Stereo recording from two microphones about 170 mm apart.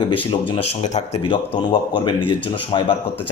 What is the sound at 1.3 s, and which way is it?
Speech, 30° left (ahead or behind).